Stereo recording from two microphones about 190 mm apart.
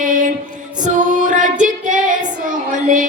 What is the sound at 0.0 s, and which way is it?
Music, 45° right (ahead or behind).